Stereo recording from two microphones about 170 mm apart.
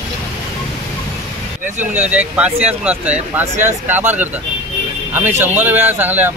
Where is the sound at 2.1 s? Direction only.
10° right (ahead or behind).